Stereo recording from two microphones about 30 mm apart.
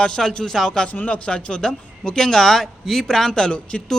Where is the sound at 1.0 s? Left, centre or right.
Left.